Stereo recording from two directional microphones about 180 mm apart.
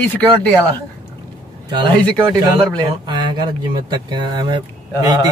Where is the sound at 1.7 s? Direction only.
25° right (ahead or behind).